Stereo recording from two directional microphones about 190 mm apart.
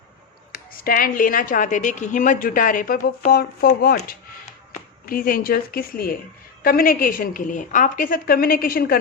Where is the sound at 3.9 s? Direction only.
40° left (ahead or behind).